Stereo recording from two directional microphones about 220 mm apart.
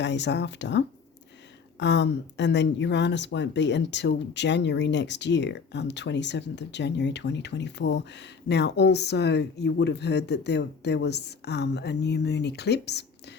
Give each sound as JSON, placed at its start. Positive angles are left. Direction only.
{"t": 0.0, "sound": "speech", "side_deg": 55}